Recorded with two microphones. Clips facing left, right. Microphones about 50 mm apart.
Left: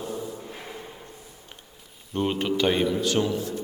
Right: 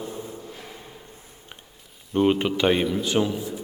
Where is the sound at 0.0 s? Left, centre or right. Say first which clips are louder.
Left 2 dB; right.